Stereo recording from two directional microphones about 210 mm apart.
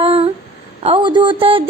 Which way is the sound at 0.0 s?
25° right (ahead or behind).